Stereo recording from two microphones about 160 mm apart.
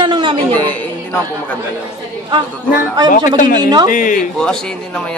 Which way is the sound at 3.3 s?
55° left (ahead or behind).